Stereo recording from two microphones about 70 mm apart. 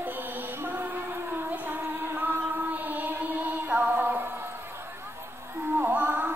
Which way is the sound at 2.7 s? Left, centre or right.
Right.